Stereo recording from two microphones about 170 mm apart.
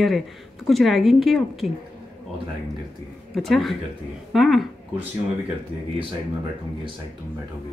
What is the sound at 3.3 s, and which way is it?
Speech, centre (ahead or behind).